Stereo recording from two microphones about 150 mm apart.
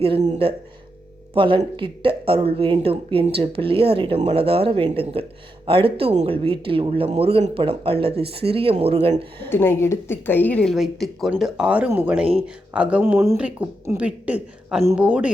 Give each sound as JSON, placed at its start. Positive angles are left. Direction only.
{"t": 1.3, "sound": "speech", "side_deg": -35}
{"t": 9.5, "sound": "speech", "side_deg": 15}